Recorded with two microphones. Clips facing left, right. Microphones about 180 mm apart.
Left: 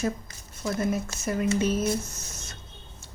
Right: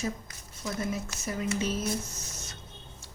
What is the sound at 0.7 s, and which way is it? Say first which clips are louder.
Speech: left 5 dB; 50° left (ahead or behind).